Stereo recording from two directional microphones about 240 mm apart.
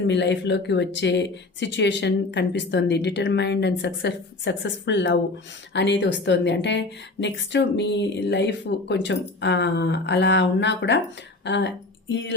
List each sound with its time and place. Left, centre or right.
0.1 s a woman's voice: left